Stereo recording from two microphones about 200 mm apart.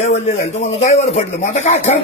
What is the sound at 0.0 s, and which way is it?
A man's voice, 35° left (ahead or behind).